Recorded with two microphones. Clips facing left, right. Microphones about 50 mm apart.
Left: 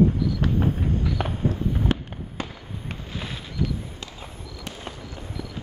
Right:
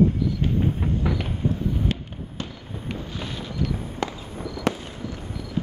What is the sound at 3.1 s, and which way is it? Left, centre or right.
Boat, centre.